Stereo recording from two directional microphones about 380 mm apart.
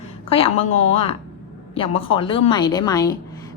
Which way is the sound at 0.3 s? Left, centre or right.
Centre.